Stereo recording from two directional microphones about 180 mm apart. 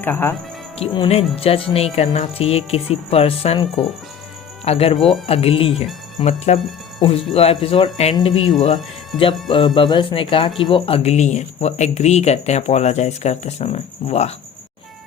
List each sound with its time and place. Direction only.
0.0 s speech: 10° left (ahead or behind)
0.8 s speech: 30° left (ahead or behind)
8.5 s speech: 40° left (ahead or behind)
9.5 s speech: 25° left (ahead or behind)